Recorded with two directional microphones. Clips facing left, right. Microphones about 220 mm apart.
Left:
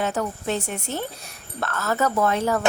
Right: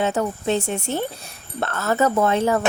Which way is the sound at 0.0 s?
25° right (ahead or behind).